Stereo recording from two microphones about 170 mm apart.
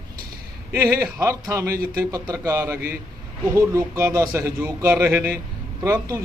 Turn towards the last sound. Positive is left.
turn(degrees=-15)  # may be behind; listen again after turning